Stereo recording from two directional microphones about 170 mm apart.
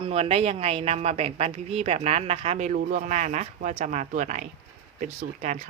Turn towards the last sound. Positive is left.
turn(degrees=-40)  # may be behind; listen again after turning